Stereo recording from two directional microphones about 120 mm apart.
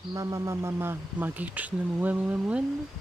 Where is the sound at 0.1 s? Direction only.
30° right (ahead or behind); by 2.6 s 15° right (ahead or behind).